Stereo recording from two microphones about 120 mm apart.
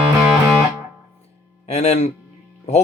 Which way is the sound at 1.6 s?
60° left (ahead or behind).